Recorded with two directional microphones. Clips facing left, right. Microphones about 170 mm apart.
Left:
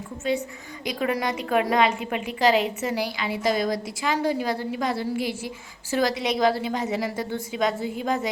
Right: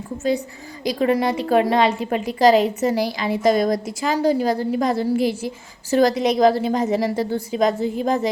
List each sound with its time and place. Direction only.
0.2 s a woman's voice: 35° right (ahead or behind)